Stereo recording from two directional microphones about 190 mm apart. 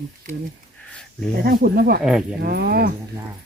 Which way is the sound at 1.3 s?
55° right (ahead or behind).